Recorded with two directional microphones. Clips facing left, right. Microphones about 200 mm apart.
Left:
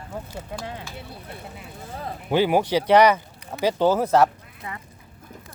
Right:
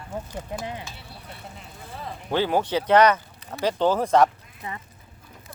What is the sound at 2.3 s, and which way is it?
Speech, 15° left (ahead or behind).